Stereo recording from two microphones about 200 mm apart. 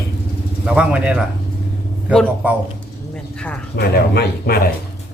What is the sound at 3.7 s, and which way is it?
Speech, 55° left (ahead or behind).